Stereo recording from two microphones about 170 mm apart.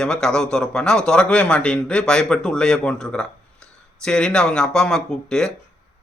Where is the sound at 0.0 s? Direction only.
5° left (ahead or behind).